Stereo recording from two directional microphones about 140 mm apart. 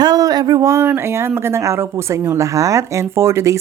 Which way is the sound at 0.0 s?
25° right (ahead or behind).